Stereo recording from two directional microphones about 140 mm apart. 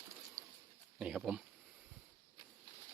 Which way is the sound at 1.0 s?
5° right (ahead or behind).